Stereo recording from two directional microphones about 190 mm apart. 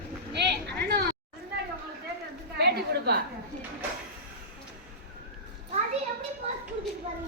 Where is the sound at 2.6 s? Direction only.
60° right (ahead or behind).